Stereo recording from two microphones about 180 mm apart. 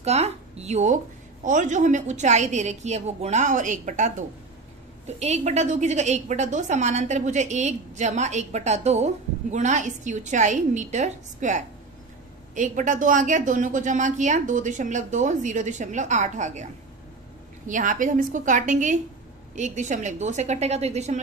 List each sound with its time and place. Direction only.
0.0 s a woman's voice: 35° right (ahead or behind)
17.6 s a woman's voice: 45° right (ahead or behind)